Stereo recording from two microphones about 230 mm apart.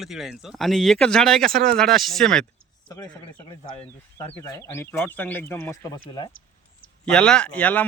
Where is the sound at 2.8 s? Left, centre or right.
Centre.